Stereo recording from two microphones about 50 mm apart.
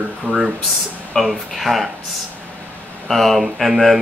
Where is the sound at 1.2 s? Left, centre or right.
Centre.